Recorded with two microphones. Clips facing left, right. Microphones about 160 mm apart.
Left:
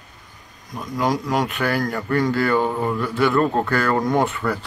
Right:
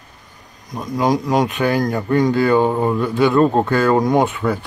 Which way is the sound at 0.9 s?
15° right (ahead or behind).